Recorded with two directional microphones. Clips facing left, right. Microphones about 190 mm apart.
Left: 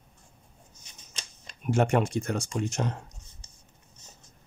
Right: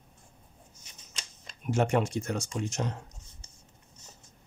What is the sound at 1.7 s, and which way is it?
Speech, 55° left (ahead or behind).